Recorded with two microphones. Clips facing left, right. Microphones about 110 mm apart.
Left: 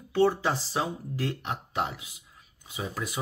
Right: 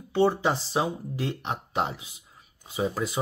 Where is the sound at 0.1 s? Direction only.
20° right (ahead or behind).